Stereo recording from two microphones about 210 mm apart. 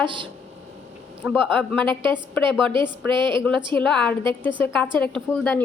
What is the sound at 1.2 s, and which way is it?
Speech, 10° right (ahead or behind).